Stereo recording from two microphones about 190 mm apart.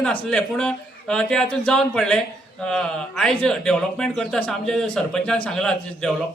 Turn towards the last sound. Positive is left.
turn(degrees=5)  # may be behind; listen again after turning